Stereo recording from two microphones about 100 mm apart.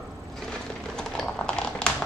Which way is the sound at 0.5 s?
5° left (ahead or behind).